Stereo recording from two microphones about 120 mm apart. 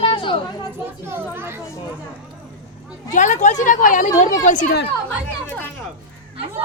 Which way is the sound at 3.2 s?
85° left.